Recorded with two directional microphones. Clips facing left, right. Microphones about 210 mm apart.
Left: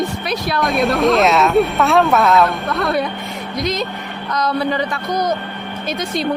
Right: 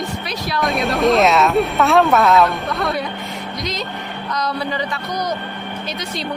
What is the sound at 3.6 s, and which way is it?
Speech, 55° left (ahead or behind).